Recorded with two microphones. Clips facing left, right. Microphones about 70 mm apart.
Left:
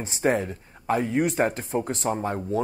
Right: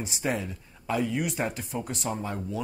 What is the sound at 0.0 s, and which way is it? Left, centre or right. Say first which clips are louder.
Speech: left 6 dB; left.